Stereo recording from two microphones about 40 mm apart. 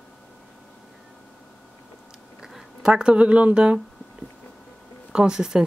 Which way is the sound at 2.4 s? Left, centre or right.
Centre.